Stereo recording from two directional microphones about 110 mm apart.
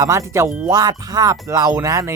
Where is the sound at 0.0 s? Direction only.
30° right (ahead or behind).